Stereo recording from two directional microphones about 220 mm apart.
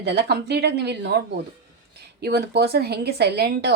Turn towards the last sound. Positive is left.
turn(degrees=-50)  # may be behind; listen again after turning